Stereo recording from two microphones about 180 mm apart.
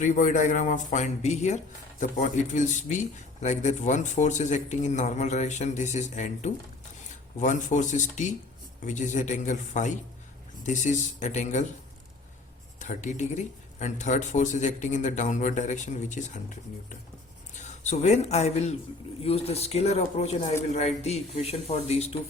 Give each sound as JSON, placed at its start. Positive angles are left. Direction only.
{"t": 0.0, "sound": "speech", "side_deg": 45}
{"t": 12.8, "sound": "speech", "side_deg": 45}